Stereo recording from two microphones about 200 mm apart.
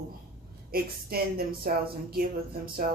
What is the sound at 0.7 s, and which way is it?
Speech, 50° right (ahead or behind).